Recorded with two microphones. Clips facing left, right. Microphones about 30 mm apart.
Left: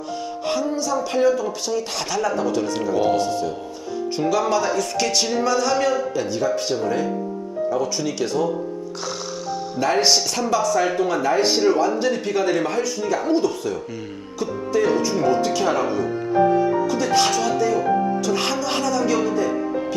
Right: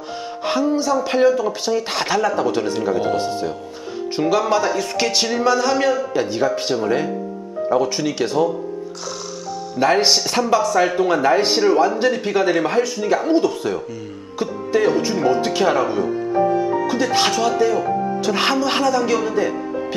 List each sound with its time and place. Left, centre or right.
0.5 s speech: right
9.8 s speech: centre
14.4 s music: centre
15.1 s speech: centre
17.0 s speech: centre
18.2 s speech: right